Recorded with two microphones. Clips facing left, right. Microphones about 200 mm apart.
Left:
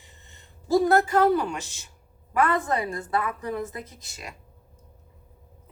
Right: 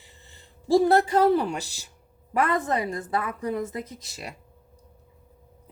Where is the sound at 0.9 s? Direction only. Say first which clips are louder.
Right 1 dB; 30° right (ahead or behind).